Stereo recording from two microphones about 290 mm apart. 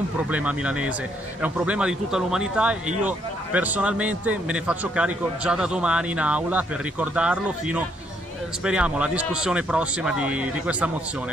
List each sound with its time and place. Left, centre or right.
0.3 s a man's voice: centre